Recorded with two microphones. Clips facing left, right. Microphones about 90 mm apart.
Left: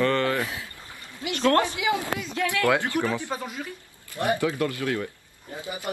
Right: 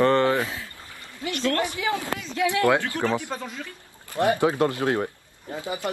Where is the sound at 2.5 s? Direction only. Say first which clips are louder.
Right 1 dB; 20° right (ahead or behind).